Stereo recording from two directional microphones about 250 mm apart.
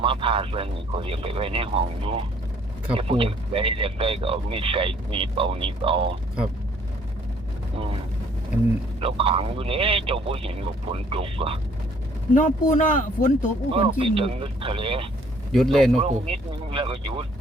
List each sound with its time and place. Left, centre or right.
0.0 s speech: right
9.0 s speech: right
12.3 s speech: left
13.7 s speech: right
15.5 s speech: centre
16.0 s speech: right